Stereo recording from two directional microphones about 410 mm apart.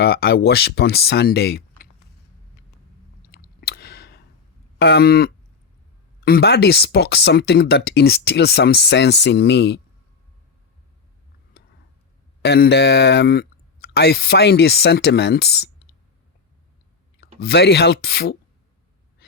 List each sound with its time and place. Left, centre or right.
0.0 s speech: left
3.3 s a sound: left
4.8 s speech: left
11.6 s a sound: left
12.4 s speech: left
17.4 s speech: left